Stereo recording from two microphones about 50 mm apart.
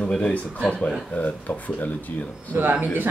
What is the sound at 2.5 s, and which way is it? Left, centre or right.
Speech, right.